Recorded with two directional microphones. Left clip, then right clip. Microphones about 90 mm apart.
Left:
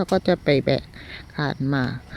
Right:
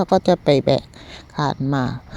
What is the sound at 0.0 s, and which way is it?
Speech, 30° right (ahead or behind).